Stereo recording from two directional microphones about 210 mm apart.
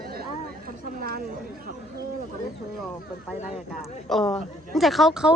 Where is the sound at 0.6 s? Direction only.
45° right (ahead or behind).